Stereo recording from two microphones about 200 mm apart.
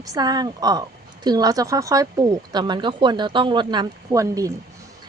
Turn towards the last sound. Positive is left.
turn(degrees=-15)  # may be behind; listen again after turning